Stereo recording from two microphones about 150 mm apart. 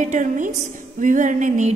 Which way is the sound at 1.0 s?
60° right (ahead or behind).